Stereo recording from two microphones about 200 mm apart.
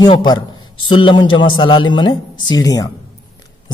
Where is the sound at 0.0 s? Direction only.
20° left (ahead or behind).